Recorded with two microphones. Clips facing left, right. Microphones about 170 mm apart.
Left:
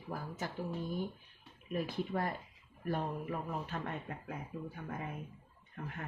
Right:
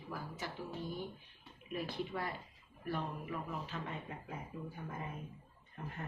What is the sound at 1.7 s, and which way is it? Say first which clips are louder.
Speech: left 4 dB; 45° left (ahead or behind).